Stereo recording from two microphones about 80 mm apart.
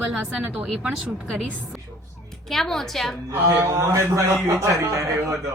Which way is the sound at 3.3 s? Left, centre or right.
Right.